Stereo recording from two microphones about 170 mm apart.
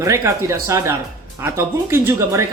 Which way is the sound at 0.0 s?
15° right (ahead or behind).